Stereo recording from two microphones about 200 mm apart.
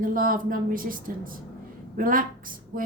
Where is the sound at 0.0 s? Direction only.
45° right (ahead or behind).